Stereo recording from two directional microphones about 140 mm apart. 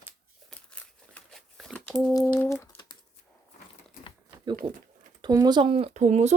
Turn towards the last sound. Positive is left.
turn(degrees=-55)  # may be behind; listen again after turning